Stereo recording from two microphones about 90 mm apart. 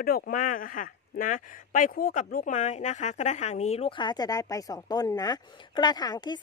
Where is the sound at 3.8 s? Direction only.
60° left (ahead or behind).